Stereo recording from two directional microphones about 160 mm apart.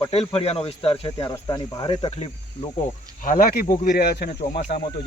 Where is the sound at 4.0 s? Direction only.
90° left.